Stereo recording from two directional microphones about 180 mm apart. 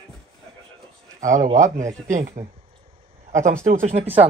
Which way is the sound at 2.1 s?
45° right (ahead or behind).